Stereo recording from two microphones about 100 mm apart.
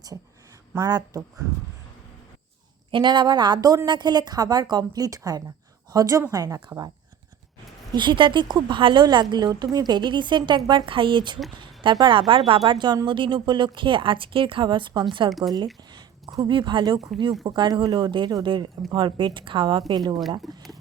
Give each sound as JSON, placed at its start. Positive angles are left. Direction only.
{"t": 0.9, "sound": "a woman's voice", "side_deg": -45}
{"t": 2.9, "sound": "a woman's voice", "side_deg": -50}
{"t": 7.9, "sound": "a woman's voice", "side_deg": -55}
{"t": 15.3, "sound": "speech", "side_deg": 0}
{"t": 15.5, "sound": "a woman's voice", "side_deg": -45}